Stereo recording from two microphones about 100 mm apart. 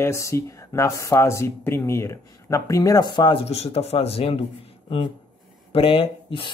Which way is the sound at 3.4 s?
90° left.